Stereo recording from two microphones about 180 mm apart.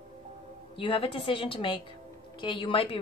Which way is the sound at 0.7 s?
30° left (ahead or behind).